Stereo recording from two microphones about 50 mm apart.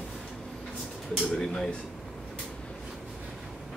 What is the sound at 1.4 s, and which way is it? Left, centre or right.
Speech, centre.